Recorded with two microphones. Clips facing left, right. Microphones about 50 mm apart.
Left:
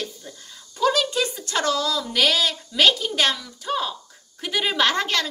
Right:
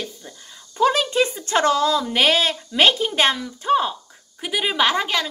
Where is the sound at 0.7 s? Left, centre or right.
Right.